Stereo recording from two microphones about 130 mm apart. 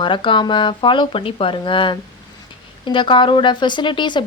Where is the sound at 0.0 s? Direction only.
40° left (ahead or behind).